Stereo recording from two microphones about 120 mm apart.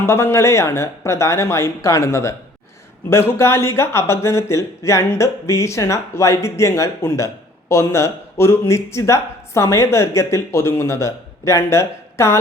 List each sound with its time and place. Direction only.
0.0 s a man's voice: 20° left (ahead or behind)